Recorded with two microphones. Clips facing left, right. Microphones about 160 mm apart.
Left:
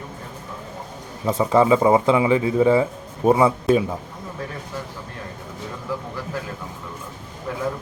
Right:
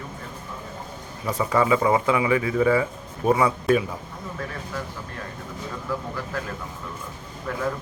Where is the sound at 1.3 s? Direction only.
25° left (ahead or behind).